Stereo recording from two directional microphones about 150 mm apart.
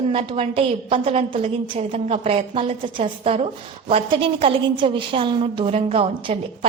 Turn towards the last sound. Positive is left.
turn(degrees=-35)  # may be behind; listen again after turning